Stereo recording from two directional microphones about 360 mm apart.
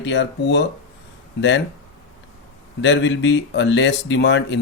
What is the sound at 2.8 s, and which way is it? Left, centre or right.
Speech, left.